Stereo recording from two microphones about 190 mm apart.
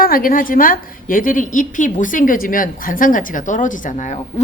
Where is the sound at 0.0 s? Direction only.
50° left (ahead or behind).